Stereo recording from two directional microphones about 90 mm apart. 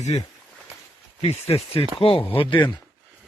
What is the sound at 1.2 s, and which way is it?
Speech, 90° left.